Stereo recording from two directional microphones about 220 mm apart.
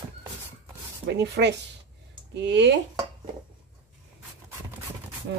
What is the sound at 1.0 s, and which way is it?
A woman's voice, 50° right (ahead or behind).